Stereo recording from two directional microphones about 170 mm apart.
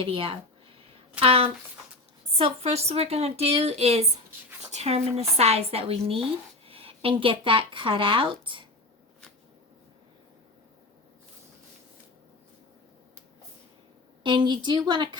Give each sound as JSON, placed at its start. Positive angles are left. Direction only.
{"t": 0.0, "sound": "a woman's voice", "side_deg": -30}
{"t": 14.3, "sound": "a woman's voice", "side_deg": -25}